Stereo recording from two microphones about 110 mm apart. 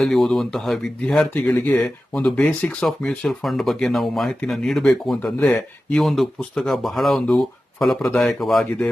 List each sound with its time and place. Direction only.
0.0 s speech: centre (ahead or behind)
1.5 s speech: 20° left (ahead or behind)
2.1 s speech: 5° left (ahead or behind)
2.8 s speech: 5° left (ahead or behind)